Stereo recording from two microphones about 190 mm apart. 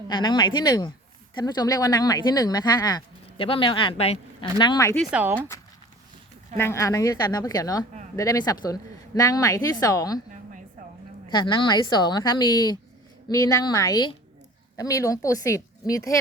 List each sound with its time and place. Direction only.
0.1 s speech: 25° left (ahead or behind)
5.1 s speech: 10° right (ahead or behind)
6.6 s speech: 15° left (ahead or behind)
11.3 s speech: 20° left (ahead or behind)